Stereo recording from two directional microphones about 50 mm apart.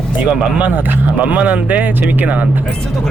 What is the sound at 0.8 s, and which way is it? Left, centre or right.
Speech, right.